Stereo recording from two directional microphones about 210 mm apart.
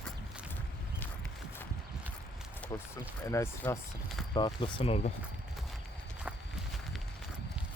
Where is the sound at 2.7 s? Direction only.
15° left (ahead or behind).